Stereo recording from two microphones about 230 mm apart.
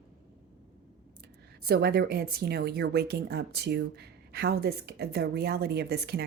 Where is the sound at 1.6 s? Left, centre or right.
Right.